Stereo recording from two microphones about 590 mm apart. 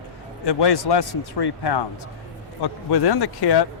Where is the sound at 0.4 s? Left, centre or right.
Left.